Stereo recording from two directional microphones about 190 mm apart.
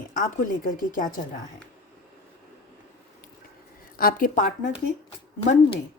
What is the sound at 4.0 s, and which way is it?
Speech, 45° left (ahead or behind).